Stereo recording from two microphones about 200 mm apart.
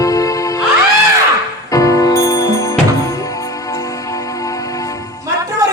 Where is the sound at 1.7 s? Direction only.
15° left (ahead or behind).